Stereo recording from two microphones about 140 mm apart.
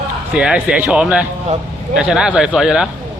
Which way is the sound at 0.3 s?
5° right (ahead or behind).